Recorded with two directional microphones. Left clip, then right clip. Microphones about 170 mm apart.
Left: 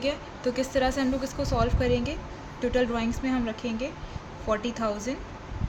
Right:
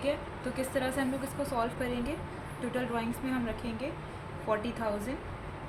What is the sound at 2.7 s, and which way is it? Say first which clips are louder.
Speech: left 7 dB; 80° left.